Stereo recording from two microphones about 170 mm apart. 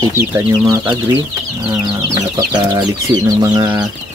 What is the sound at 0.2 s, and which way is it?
Speech, 10° right (ahead or behind).